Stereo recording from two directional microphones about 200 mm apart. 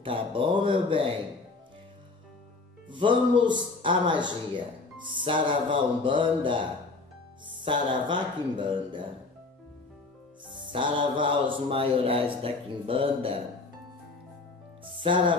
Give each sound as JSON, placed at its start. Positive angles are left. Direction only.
{"t": 0.0, "sound": "a man's voice", "side_deg": -25}
{"t": 2.9, "sound": "a man's voice", "side_deg": -25}
{"t": 10.6, "sound": "a man's voice", "side_deg": -25}
{"t": 14.9, "sound": "music", "side_deg": -25}